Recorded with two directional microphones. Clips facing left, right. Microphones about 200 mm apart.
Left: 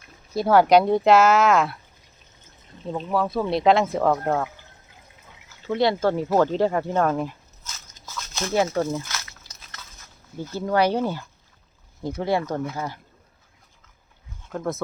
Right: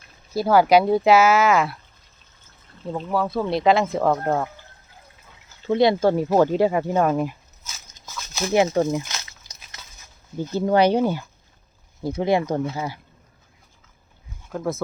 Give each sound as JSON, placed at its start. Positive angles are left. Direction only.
{"t": 0.3, "sound": "speech", "side_deg": 0}
{"t": 2.6, "sound": "a sound", "side_deg": 20}
{"t": 3.2, "sound": "speech", "side_deg": 0}
{"t": 5.6, "sound": "speech", "side_deg": -20}
{"t": 8.0, "sound": "a sound", "side_deg": -10}
{"t": 10.3, "sound": "speech", "side_deg": -20}
{"t": 14.4, "sound": "speech", "side_deg": 0}